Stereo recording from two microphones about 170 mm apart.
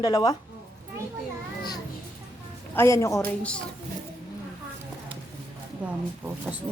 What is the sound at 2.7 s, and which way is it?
Speech, 15° left (ahead or behind).